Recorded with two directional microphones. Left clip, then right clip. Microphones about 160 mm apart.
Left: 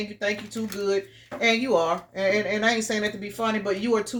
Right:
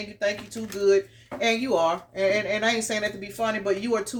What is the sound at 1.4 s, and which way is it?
Speech, 40° left (ahead or behind).